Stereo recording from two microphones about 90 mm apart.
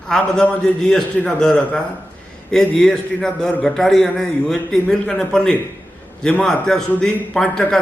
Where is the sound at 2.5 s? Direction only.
5° left (ahead or behind).